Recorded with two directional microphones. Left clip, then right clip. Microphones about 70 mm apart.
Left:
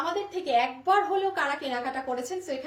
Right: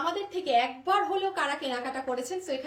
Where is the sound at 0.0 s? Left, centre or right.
Right.